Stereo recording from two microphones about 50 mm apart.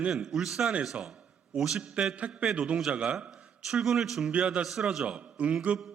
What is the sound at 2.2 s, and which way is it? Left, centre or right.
A man's voice, right.